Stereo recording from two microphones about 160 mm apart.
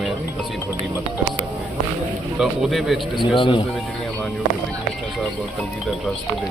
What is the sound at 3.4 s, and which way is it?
Speech, 30° left (ahead or behind).